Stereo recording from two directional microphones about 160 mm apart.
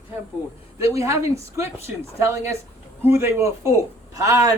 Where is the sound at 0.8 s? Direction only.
20° right (ahead or behind).